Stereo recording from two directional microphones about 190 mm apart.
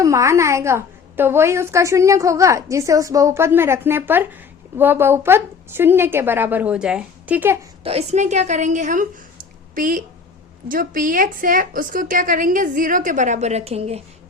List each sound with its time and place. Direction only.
0.0 s a woman's voice: 15° right (ahead or behind)
7.9 s a woman's voice: 35° right (ahead or behind)